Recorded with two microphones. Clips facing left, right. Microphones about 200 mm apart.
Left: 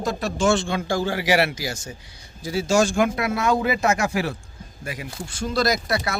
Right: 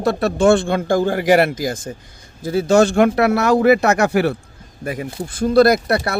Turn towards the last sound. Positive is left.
turn(degrees=-60)  # may be behind; listen again after turning